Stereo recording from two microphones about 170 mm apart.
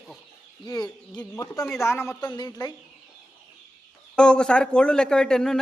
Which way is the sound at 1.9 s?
15° left (ahead or behind).